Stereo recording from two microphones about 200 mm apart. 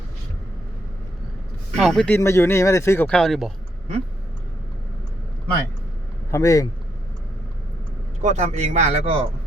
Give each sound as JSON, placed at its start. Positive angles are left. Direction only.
{"t": 1.8, "sound": "speech", "side_deg": 5}
{"t": 6.3, "sound": "speech", "side_deg": 15}
{"t": 8.2, "sound": "speech", "side_deg": -35}